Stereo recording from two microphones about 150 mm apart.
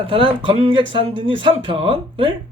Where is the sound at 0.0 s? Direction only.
35° right (ahead or behind).